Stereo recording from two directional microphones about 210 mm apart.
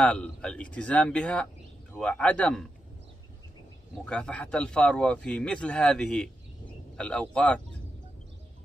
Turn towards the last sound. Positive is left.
turn(degrees=5)  # may be behind; listen again after turning